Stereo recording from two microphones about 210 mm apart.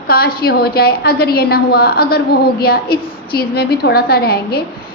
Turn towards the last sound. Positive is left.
turn(degrees=45)  # may be behind; listen again after turning